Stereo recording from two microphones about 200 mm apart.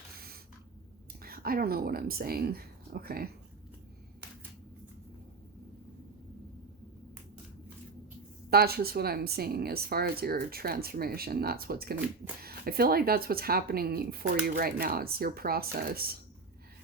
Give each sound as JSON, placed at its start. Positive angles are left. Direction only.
{"t": 1.2, "sound": "speech", "side_deg": -50}
{"t": 8.4, "sound": "speech", "side_deg": -50}